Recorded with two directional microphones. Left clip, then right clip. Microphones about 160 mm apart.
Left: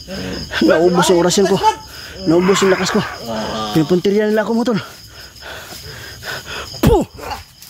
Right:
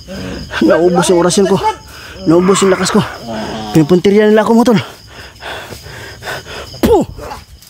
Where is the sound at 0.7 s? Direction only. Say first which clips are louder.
Right 3 dB; 10° right (ahead or behind).